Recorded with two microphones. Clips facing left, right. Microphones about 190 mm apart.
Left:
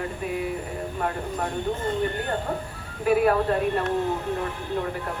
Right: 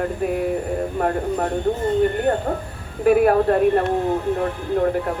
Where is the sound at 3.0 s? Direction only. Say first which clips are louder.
Right 5 dB; 50° right (ahead or behind).